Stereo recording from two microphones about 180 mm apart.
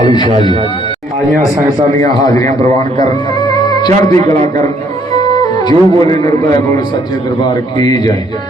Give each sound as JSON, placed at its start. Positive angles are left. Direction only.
{"t": 0.0, "sound": "a man's voice", "side_deg": 25}
{"t": 2.0, "sound": "a man's voice", "side_deg": 20}
{"t": 3.7, "sound": "a man's voice", "side_deg": 25}
{"t": 5.6, "sound": "a man's voice", "side_deg": 20}